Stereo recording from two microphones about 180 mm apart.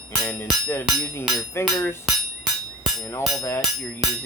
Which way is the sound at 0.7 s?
10° left (ahead or behind).